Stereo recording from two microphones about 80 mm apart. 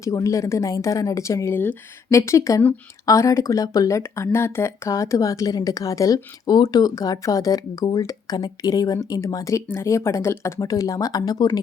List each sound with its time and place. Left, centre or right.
0.0 s a woman's voice: left
6.4 s a woman's voice: left